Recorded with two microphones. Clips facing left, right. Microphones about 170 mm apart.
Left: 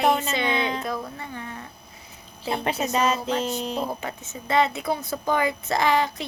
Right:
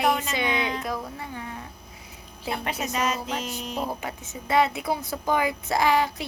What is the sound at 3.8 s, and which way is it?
Speech, 10° right (ahead or behind).